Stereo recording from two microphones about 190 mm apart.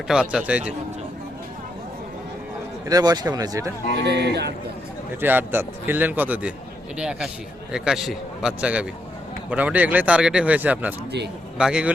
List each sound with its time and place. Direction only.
0.1 s a man's voice: 5° right (ahead or behind)
2.9 s speech: 20° right (ahead or behind)
4.0 s speech: 60° right (ahead or behind)
5.2 s a man's voice: 10° right (ahead or behind)